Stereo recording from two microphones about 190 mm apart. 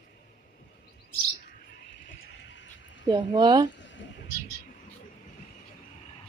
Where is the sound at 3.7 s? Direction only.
70° left (ahead or behind).